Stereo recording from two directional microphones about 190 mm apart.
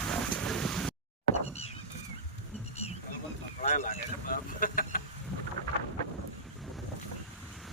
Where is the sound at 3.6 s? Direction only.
35° left (ahead or behind).